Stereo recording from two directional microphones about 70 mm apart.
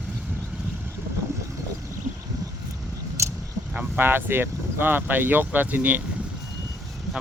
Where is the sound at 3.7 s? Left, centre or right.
Right.